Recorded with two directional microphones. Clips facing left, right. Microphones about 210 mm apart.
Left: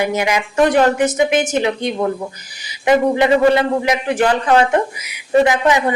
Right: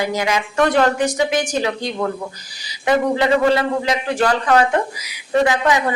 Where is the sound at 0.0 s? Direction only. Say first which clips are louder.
Left 2 dB; 20° left (ahead or behind).